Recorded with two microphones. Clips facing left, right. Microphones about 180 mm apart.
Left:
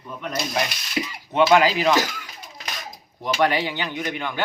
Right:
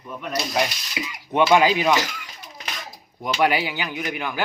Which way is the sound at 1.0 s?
40° left (ahead or behind).